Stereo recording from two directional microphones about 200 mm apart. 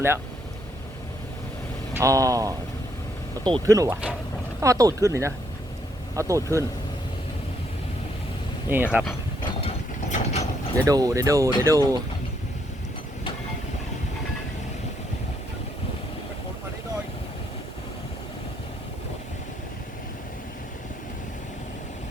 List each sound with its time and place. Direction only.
2.0 s speech: 15° right (ahead or behind)
8.7 s speech: 5° right (ahead or behind)
9.4 s mechanisms: 25° left (ahead or behind)
10.8 s speech: 20° right (ahead or behind)